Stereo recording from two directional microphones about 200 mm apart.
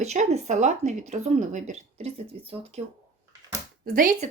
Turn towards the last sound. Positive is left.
turn(degrees=-40)  # may be behind; listen again after turning